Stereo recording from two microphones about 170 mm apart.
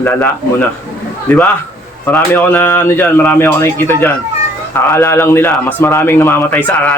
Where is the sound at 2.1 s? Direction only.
10° left (ahead or behind).